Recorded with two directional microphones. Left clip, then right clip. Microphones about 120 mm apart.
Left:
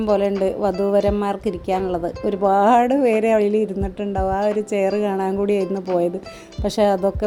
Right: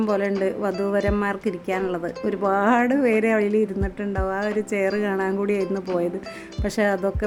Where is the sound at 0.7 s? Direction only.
5° left (ahead or behind).